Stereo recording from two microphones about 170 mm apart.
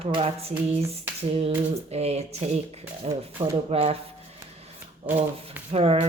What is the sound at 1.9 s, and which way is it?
Speech, 40° right (ahead or behind).